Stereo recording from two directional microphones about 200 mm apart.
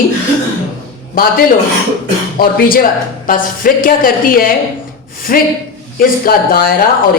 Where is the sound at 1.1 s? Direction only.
45° left (ahead or behind).